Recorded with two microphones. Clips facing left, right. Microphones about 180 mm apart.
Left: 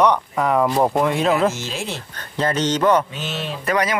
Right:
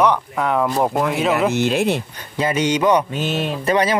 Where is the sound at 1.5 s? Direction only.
60° right (ahead or behind).